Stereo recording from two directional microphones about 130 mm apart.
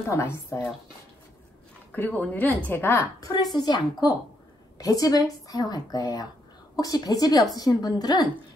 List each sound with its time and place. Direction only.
0.1 s speech: 20° left (ahead or behind)
1.9 s a woman's voice: 10° left (ahead or behind); by 8.3 s 30° left (ahead or behind)